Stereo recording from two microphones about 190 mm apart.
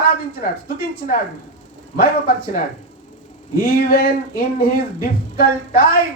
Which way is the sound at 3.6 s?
50° left (ahead or behind).